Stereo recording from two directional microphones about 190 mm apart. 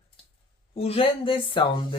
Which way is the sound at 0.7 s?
30° left (ahead or behind).